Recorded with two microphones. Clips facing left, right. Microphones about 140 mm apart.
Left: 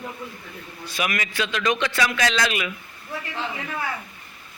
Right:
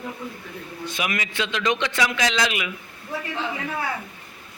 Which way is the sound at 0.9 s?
20° right (ahead or behind).